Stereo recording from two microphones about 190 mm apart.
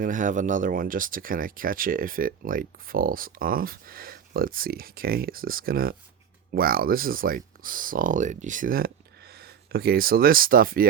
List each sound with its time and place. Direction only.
0.0 s speech: 45° right (ahead or behind)